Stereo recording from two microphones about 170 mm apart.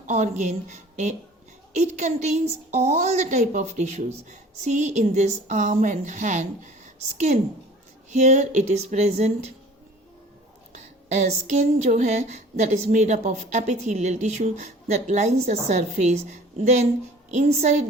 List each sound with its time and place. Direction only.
0.1 s a woman's voice: 45° right (ahead or behind)
8.1 s a sound: 45° right (ahead or behind)
11.1 s a woman's voice: 40° right (ahead or behind)